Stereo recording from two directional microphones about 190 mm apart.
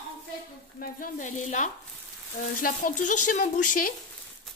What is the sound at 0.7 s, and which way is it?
Speech, 45° left (ahead or behind).